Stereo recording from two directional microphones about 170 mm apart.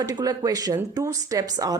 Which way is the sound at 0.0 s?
20° right (ahead or behind).